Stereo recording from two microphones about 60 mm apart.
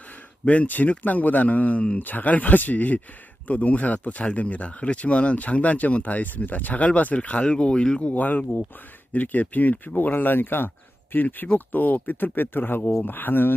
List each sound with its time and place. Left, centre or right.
0.4 s speech: left
8.1 s speech: left